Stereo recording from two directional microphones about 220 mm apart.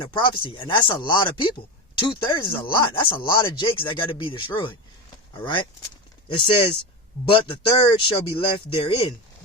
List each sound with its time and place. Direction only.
0.0 s speech: 20° left (ahead or behind)
6.2 s speech: 20° left (ahead or behind)